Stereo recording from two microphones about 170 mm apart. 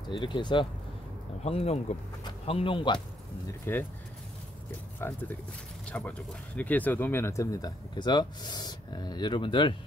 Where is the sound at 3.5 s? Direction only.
15° left (ahead or behind).